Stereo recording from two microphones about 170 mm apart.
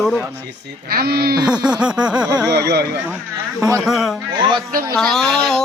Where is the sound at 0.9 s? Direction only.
65° right (ahead or behind).